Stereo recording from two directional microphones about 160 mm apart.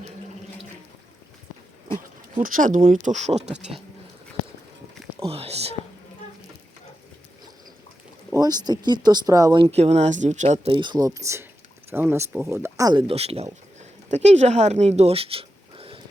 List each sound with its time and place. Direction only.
2.4 s speech: 55° right (ahead or behind)
5.2 s speech: 40° right (ahead or behind)
8.3 s speech: 25° right (ahead or behind); by 10.7 s 45° right (ahead or behind)
10.7 s speech: 30° right (ahead or behind)